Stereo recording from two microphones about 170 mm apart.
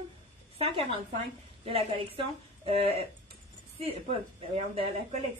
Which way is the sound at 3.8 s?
35° right (ahead or behind).